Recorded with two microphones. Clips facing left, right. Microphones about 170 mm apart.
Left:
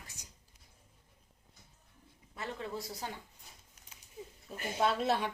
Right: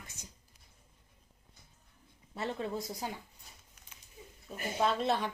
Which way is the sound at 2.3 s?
25° right (ahead or behind).